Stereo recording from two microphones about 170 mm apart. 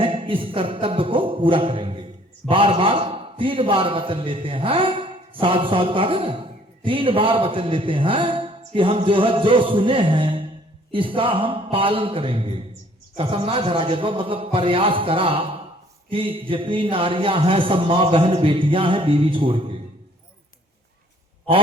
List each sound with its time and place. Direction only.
0.0 s a man's voice: 30° right (ahead or behind)